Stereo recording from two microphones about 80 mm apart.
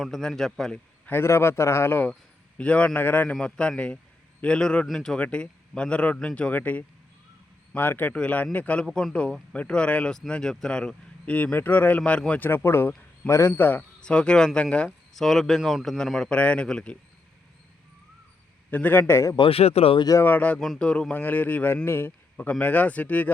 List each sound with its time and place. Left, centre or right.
0.0 s speech: centre
1.0 s a man's voice: left
2.6 s a man's voice: centre
3.4 s a man's voice: centre
8.9 s speech: centre
9.5 s speech: centre
12.4 s a man's voice: left
14.0 s speech: centre
14.8 s speech: centre
16.4 s speech: centre
18.7 s a man's voice: left
20.2 s a man's voice: left
21.1 s a man's voice: left
22.4 s a man's voice: centre